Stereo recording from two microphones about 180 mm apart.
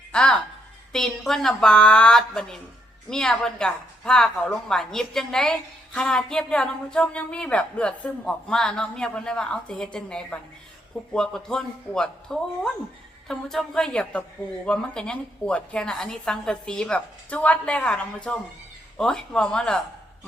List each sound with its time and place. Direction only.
0.1 s a woman's voice: 5° left (ahead or behind)